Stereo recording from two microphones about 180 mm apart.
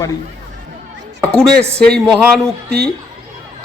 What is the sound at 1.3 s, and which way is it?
A man's voice, 5° left (ahead or behind).